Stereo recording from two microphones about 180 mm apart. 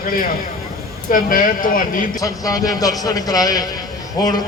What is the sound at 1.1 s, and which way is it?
Speech, 50° left (ahead or behind).